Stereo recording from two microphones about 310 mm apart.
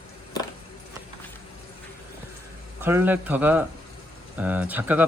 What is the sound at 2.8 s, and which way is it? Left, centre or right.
Speech, centre.